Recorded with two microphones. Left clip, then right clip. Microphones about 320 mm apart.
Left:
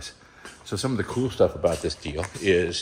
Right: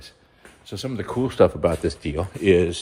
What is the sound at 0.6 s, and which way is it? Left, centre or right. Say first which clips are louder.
Speech: left 3 dB; centre.